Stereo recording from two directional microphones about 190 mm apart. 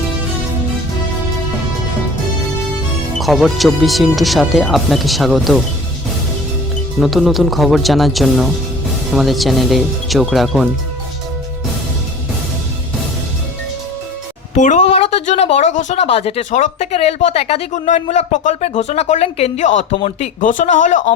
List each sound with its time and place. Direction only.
3.2 s speech: centre (ahead or behind)
7.0 s speech: centre (ahead or behind)
14.5 s speech: 40° left (ahead or behind)